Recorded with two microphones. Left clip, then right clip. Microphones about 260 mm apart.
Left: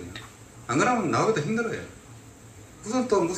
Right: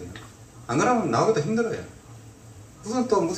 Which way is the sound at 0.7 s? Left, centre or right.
Right.